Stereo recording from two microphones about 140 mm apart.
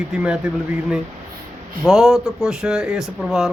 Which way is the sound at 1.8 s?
5° right (ahead or behind).